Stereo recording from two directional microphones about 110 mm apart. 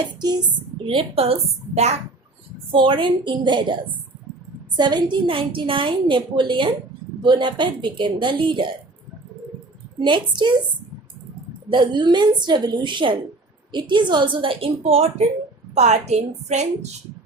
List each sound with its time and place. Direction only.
0.9 s a woman's voice: 55° right (ahead or behind); by 2.0 s 80° right
2.7 s a woman's voice: 50° right (ahead or behind)
4.8 s a woman's voice: 40° right (ahead or behind)
10.0 s a woman's voice: 45° right (ahead or behind)
11.7 s a woman's voice: 45° right (ahead or behind); by 15.1 s 65° right (ahead or behind)
15.7 s a woman's voice: 90° right